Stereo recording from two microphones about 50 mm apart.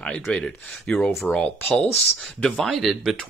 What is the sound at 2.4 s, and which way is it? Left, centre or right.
Speech, centre.